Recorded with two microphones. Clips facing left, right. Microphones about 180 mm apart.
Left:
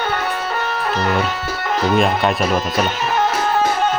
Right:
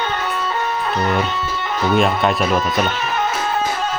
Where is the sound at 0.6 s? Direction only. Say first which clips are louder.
Right 1 dB; 75° left (ahead or behind).